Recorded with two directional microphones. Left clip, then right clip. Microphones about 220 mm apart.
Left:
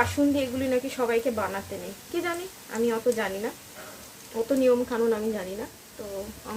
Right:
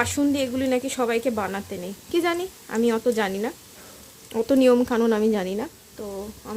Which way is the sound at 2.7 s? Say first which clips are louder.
Right 3 dB; 50° right (ahead or behind).